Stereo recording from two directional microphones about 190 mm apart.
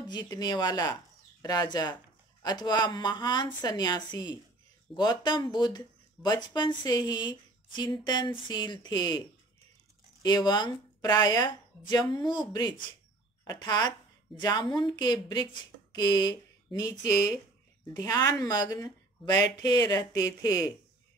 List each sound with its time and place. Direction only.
0.1 s speech: 20° left (ahead or behind)
10.2 s a woman's voice: 20° left (ahead or behind)